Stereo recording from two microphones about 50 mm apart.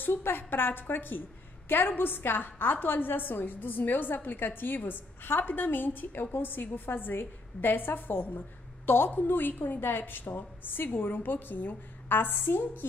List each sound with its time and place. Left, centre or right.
0.0 s a woman's voice: left